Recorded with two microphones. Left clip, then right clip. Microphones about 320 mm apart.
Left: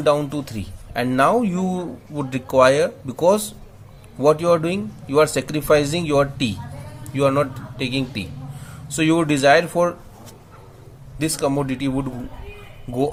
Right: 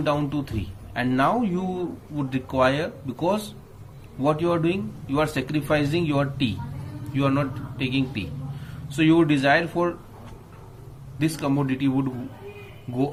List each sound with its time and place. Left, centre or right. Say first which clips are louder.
0.0 s speech: left 6 dB; left
11.2 s speech: left 4 dB; left